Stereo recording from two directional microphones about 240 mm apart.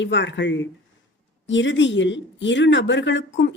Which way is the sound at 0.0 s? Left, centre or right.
Left.